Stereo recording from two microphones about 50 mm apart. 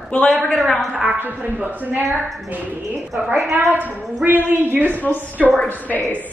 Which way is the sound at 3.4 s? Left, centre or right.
Centre.